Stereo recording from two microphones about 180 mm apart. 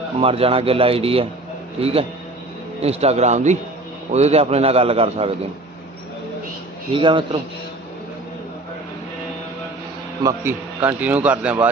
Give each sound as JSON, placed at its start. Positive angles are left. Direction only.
{"t": 0.2, "sound": "speech", "side_deg": -30}
{"t": 6.9, "sound": "a man's voice", "side_deg": -30}
{"t": 10.2, "sound": "speech", "side_deg": -10}